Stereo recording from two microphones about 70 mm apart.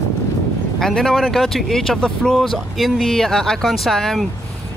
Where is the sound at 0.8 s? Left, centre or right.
Centre.